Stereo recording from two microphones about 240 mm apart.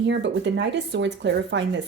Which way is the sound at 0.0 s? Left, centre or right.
Right.